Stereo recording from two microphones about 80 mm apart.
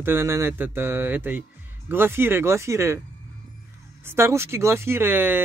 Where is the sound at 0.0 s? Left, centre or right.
Right.